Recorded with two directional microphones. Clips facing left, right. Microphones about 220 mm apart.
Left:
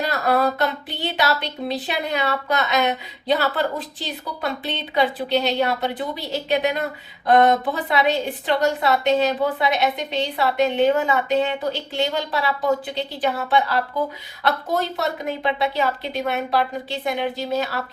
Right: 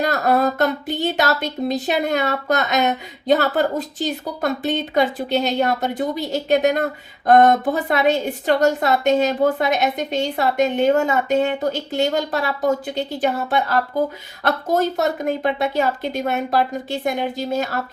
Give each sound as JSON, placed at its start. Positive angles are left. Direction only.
{"t": 0.0, "sound": "speech", "side_deg": -45}